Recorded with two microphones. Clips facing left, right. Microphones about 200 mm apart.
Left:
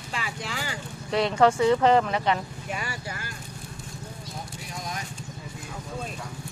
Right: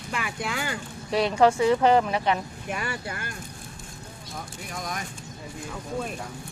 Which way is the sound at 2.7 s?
55° right (ahead or behind).